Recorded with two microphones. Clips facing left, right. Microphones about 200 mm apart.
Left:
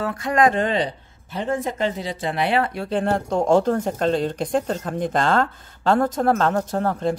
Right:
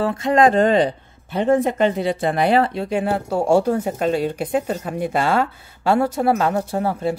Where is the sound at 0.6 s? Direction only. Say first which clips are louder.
Right 6 dB; 45° right (ahead or behind).